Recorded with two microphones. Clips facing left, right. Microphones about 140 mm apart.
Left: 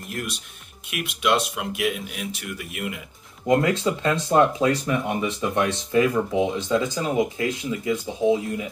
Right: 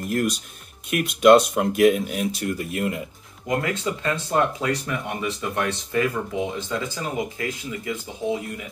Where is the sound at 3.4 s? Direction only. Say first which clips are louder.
Left 5 dB; 30° left (ahead or behind).